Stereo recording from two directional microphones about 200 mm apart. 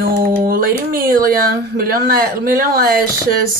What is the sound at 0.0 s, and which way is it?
A woman's voice, 45° right (ahead or behind).